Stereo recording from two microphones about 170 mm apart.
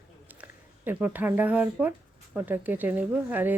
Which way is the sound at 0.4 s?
10° right (ahead or behind).